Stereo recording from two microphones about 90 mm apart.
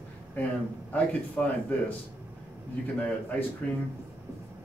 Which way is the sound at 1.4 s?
10° left (ahead or behind).